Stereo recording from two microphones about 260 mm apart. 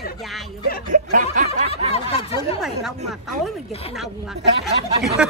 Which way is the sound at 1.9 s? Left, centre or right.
Left.